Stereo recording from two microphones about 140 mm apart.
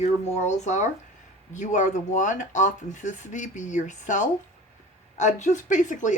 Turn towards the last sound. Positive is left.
turn(degrees=60)  # may be behind; listen again after turning